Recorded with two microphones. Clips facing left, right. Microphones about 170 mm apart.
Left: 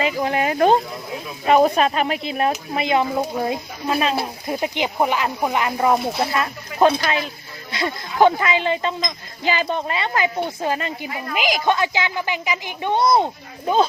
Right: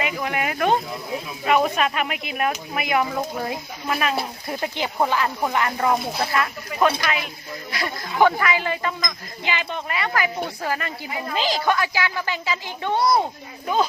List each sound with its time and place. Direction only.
0.0 s a woman's voice: 30° left (ahead or behind)
9.4 s a woman's voice: 35° left (ahead or behind); by 13.2 s 20° left (ahead or behind)